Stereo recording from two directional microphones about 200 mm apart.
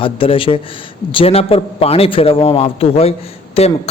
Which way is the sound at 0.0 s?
25° left (ahead or behind).